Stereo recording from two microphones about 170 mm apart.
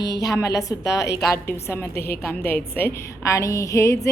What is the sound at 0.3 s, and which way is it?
A woman's voice, 20° left (ahead or behind).